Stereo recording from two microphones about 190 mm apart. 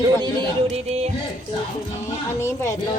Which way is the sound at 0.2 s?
30° right (ahead or behind).